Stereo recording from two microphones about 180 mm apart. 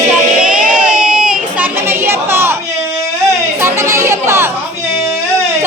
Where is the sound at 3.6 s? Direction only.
15° right (ahead or behind).